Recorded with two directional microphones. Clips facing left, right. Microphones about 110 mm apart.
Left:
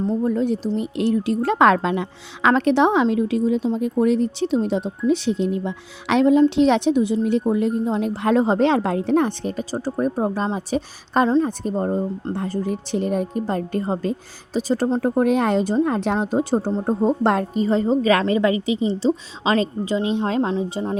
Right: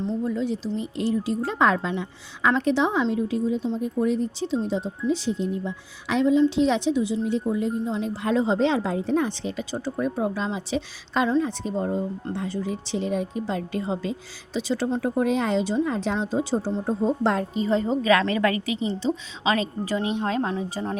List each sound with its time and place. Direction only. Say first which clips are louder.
0.0 s a woman's voice: left 5 dB; 45° left (ahead or behind); by 20.9 s 25° left (ahead or behind)